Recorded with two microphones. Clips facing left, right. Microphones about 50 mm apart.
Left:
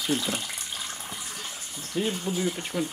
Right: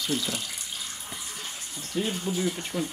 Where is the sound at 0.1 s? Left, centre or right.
Left.